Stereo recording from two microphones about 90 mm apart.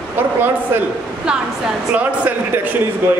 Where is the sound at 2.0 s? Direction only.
15° right (ahead or behind).